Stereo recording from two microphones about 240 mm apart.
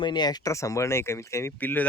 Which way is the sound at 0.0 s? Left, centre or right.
Centre.